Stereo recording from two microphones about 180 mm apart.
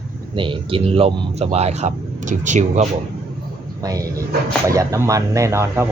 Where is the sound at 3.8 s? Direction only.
20° right (ahead or behind).